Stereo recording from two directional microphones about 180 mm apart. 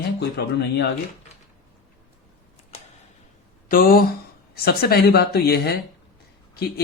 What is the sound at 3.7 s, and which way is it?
Speech, 55° left (ahead or behind).